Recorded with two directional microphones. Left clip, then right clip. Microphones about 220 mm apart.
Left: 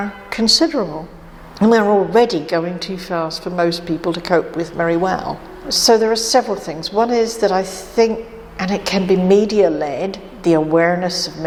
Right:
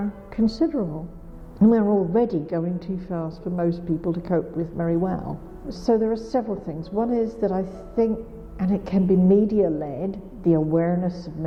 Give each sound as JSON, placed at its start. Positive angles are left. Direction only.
{"t": 0.0, "sound": "speech", "side_deg": 5}
{"t": 0.8, "sound": "a woman's voice", "side_deg": 25}
{"t": 1.5, "sound": "a woman's voice", "side_deg": 10}